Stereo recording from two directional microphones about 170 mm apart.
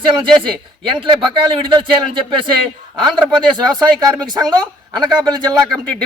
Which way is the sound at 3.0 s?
25° right (ahead or behind).